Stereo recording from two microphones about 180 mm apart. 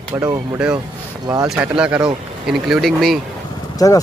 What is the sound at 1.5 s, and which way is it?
Speech, 5° right (ahead or behind).